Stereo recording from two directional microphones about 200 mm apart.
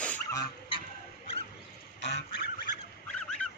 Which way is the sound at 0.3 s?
25° left (ahead or behind).